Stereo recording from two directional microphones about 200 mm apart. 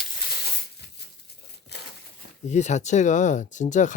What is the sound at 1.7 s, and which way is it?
Crumpling, 55° left (ahead or behind).